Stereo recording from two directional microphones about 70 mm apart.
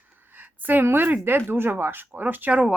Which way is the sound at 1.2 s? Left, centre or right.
Right.